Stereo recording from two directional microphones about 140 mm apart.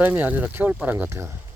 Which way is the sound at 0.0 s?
10° right (ahead or behind).